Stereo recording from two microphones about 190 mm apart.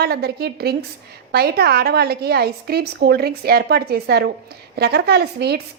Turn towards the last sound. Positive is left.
turn(degrees=-55)  # may be behind; listen again after turning